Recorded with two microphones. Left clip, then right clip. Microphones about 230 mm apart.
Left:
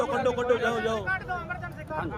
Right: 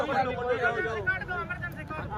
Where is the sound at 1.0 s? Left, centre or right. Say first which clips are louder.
Even; centre.